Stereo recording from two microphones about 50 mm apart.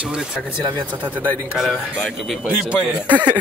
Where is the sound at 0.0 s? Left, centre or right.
Centre.